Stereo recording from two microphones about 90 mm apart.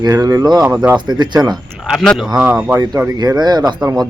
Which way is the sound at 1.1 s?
50° right (ahead or behind).